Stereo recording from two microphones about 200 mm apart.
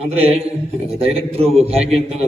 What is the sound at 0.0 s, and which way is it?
A man's voice, 30° right (ahead or behind).